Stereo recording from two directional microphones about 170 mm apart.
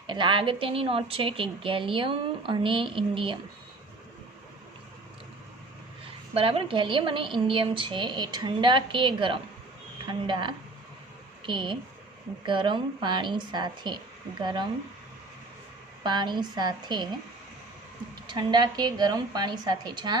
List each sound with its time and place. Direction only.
0.1 s a woman's voice: 30° right (ahead or behind)
6.3 s a woman's voice: 35° right (ahead or behind)
16.0 s a woman's voice: 25° right (ahead or behind)
18.3 s a woman's voice: 25° right (ahead or behind)